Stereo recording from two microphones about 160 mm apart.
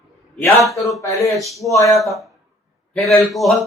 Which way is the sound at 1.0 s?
20° left (ahead or behind).